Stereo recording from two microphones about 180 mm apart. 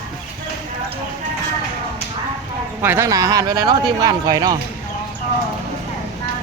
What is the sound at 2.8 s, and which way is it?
Speech, 10° right (ahead or behind).